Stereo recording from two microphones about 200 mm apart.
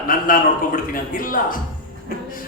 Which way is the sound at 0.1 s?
45° left (ahead or behind).